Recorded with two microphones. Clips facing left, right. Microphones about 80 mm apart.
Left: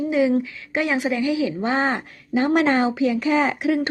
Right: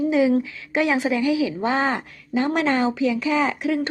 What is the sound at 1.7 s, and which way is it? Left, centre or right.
Speech, centre.